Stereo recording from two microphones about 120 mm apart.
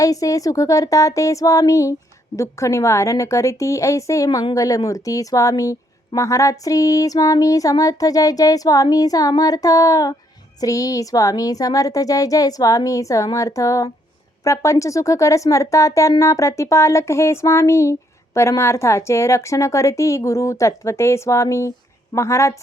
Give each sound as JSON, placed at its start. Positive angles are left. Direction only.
{"t": 0.0, "sound": "child singing", "side_deg": 30}